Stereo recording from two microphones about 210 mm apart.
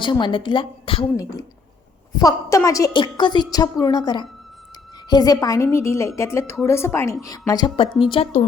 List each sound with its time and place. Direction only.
0.0 s a woman's voice: 20° left (ahead or behind)
8.1 s speech: 30° left (ahead or behind)